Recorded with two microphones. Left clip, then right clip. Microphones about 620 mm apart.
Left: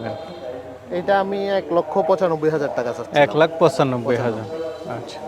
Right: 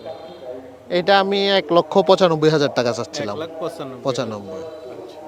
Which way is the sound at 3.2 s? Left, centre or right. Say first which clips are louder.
Left 11 dB; left.